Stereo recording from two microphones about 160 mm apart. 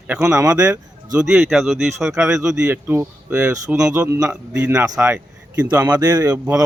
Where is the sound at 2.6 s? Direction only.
15° right (ahead or behind).